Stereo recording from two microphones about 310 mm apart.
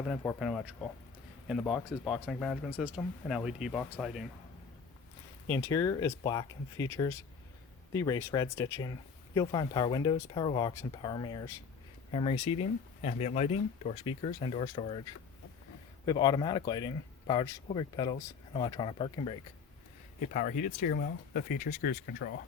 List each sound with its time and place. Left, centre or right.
0.1 s speech: centre
5.5 s speech: centre; by 22.4 s left